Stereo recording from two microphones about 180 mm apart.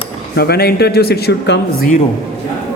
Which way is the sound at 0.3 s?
60° left (ahead or behind).